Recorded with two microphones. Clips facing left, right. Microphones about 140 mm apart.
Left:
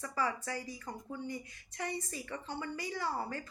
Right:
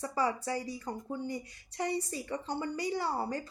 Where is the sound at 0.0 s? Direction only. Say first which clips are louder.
Right 4 dB; 30° right (ahead or behind).